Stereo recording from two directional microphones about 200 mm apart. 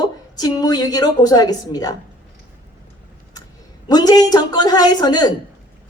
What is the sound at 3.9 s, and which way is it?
Speech, 20° left (ahead or behind).